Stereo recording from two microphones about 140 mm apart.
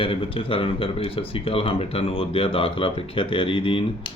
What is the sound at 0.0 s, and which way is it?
Speech, 40° left (ahead or behind).